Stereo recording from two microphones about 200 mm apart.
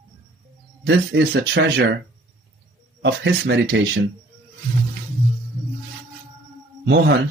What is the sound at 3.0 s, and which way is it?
Speech, 65° right (ahead or behind).